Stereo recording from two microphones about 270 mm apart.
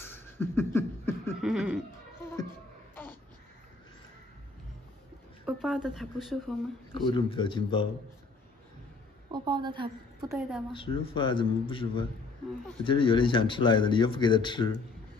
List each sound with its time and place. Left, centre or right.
0.0 s a sound: centre
1.4 s a sound: centre
5.4 s speech: centre
6.9 s speech: centre
9.3 s a woman's voice: centre
10.2 s a woman's voice: centre
10.7 s a man's voice: centre